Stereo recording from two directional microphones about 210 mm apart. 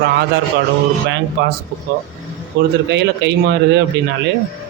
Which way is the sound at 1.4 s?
55° right (ahead or behind).